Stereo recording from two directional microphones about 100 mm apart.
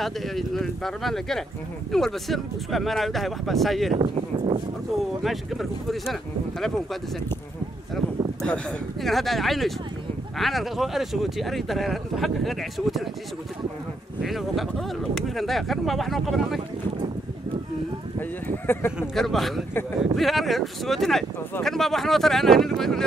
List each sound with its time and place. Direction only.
0.0 s speech: centre (ahead or behind)
4.0 s speech: 50° right (ahead or behind)
5.2 s speech: centre (ahead or behind)
9.0 s speech: centre (ahead or behind)
14.2 s speech: centre (ahead or behind)
18.7 s speech: 20° left (ahead or behind)
19.1 s speech: 5° left (ahead or behind)